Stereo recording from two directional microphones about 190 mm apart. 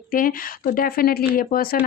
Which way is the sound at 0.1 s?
50° left (ahead or behind).